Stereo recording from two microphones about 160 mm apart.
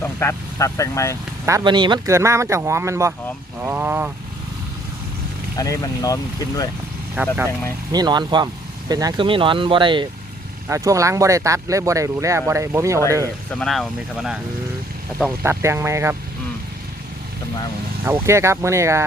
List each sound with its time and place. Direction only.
0.0 s speech: 15° left (ahead or behind)
1.5 s speech: 25° right (ahead or behind)
2.1 s speech: 15° right (ahead or behind)
5.5 s speech: 20° left (ahead or behind)
7.2 s speech: 10° right (ahead or behind)
7.9 s speech: 25° right (ahead or behind)
10.7 s speech: 20° right (ahead or behind)
13.5 s speech: 5° left (ahead or behind)
15.4 s speech: 15° right (ahead or behind)
18.0 s speech: 15° right (ahead or behind)